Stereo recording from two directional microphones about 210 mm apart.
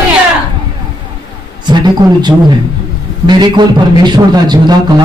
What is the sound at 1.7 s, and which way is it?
A man's voice, 20° right (ahead or behind).